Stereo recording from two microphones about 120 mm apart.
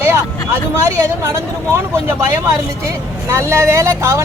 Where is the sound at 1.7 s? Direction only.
20° right (ahead or behind).